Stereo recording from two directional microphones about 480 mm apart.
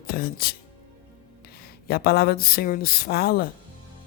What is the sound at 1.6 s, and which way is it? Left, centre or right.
Speech, centre.